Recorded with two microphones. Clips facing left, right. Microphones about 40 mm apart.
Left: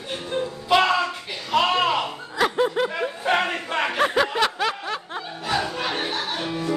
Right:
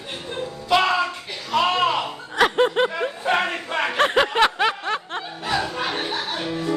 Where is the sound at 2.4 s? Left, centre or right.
Right.